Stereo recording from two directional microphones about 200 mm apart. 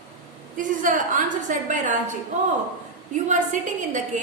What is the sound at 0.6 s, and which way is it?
A woman's voice, 40° right (ahead or behind).